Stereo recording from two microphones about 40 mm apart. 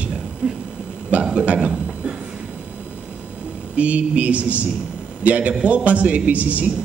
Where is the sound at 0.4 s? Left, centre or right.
Right.